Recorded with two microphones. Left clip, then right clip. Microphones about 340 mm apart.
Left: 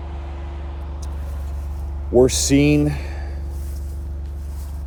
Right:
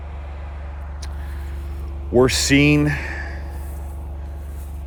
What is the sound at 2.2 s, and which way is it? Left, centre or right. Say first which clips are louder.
Speech: right 3 dB; right.